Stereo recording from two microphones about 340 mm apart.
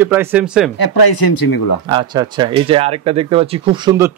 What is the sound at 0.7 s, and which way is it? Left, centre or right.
Speech, left.